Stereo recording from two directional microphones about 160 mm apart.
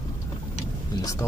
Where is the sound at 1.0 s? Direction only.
20° left (ahead or behind).